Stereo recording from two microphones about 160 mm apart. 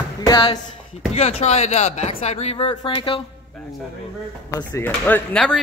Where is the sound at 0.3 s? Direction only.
30° left (ahead or behind).